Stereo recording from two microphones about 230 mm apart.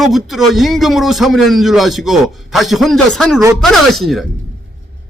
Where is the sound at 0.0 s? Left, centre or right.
Centre.